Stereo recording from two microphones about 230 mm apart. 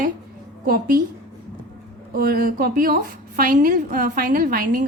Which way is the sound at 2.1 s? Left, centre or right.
Right.